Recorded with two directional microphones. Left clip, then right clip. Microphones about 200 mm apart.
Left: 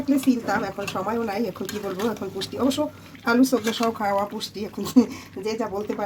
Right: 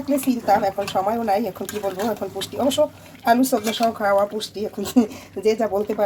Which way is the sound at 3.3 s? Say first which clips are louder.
Right 3 dB; 10° right (ahead or behind).